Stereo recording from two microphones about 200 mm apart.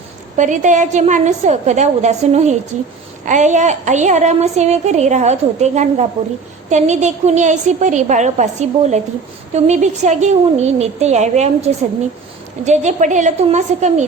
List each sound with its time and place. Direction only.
0.3 s a woman's voice: 40° right (ahead or behind)